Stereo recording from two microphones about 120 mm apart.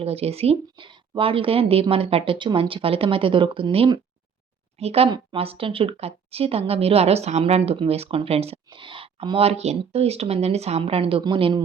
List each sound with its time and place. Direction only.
0.0 s speech: 55° right (ahead or behind)
0.9 s a woman's voice: 40° right (ahead or behind)
4.8 s speech: 60° right (ahead or behind)
5.0 s a woman's voice: 40° right (ahead or behind)
5.4 s speech: 50° right (ahead or behind)
8.7 s a woman's voice: 45° right (ahead or behind)